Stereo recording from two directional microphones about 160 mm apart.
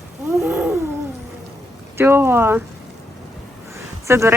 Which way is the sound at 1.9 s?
15° right (ahead or behind).